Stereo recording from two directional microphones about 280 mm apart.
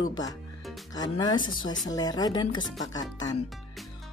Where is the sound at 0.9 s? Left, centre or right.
Centre.